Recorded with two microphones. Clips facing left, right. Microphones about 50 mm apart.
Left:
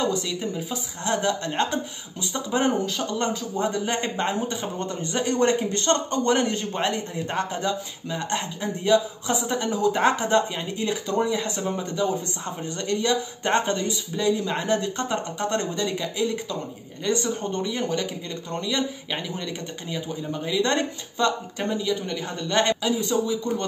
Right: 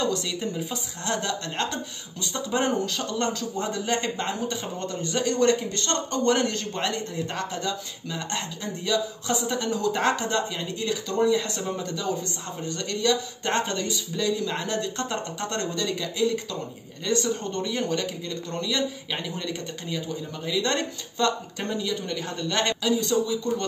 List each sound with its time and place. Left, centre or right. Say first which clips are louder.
0.0 s a man's voice: left 1 dB; centre
19.9 s speech: left 2 dB; centre